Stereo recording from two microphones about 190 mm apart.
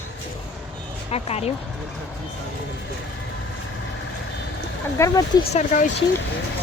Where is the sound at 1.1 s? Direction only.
35° left (ahead or behind).